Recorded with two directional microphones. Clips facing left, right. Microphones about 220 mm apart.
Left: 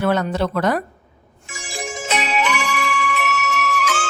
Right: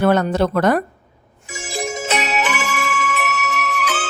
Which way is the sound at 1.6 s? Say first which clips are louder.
Right 4 dB; 40° right (ahead or behind).